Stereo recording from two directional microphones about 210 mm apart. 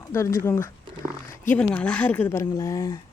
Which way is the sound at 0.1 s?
15° left (ahead or behind).